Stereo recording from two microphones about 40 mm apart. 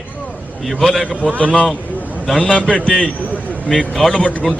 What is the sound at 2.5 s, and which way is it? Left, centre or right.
A man's voice, left.